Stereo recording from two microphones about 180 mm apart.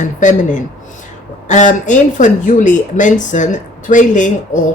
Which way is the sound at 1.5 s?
45° left (ahead or behind).